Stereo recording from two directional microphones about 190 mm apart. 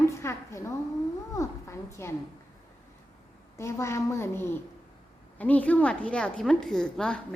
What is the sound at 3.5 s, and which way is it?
A woman's voice, 15° left (ahead or behind).